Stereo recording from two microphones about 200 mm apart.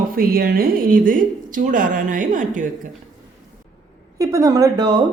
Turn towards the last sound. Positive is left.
turn(degrees=-20)  # may be behind; listen again after turning